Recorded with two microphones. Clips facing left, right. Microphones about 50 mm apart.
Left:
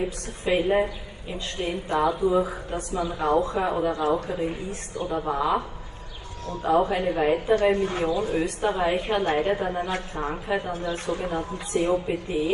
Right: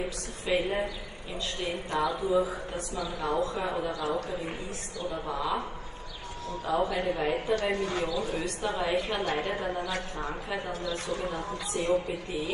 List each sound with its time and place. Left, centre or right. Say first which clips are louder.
0.5 s a woman's voice: left 6 dB; left
6.6 s a woman's voice: left 6 dB; left